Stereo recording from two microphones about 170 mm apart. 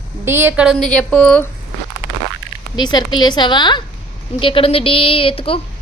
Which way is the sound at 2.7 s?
25° left (ahead or behind).